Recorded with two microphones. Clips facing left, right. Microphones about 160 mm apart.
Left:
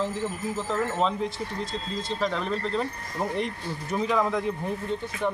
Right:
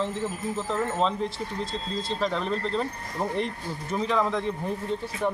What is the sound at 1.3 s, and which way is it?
Speech, 30° right (ahead or behind).